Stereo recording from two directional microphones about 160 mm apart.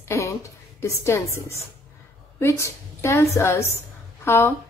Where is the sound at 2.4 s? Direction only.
15° left (ahead or behind).